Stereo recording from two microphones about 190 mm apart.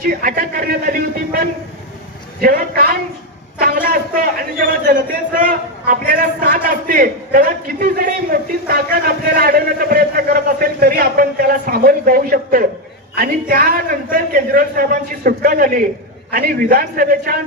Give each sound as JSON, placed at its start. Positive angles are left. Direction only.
{"t": 0.0, "sound": "a man's voice", "side_deg": -50}